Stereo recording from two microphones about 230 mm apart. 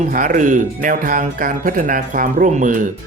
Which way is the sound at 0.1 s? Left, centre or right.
Right.